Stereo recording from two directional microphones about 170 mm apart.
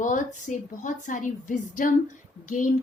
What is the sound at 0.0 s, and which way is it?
A woman's voice, 50° left (ahead or behind).